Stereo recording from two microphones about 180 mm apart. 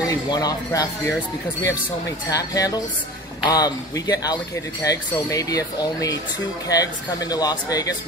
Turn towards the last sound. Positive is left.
turn(degrees=20)  # may be behind; listen again after turning